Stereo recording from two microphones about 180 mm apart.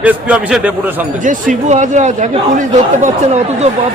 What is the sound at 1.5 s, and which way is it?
Speech, 40° right (ahead or behind).